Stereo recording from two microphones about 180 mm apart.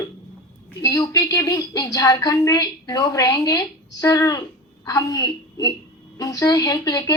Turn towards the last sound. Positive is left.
turn(degrees=20)  # may be behind; listen again after turning